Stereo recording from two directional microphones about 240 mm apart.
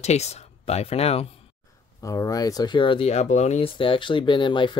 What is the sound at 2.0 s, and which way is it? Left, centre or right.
Speech, centre.